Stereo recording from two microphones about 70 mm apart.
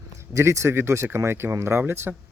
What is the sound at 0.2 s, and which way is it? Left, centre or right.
Speech, right.